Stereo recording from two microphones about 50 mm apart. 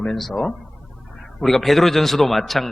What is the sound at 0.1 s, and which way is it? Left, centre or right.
A man's voice, centre.